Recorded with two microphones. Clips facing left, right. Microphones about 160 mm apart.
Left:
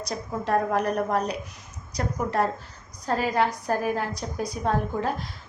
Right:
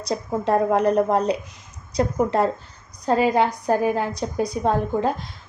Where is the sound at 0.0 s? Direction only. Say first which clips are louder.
Right 6 dB; 30° right (ahead or behind).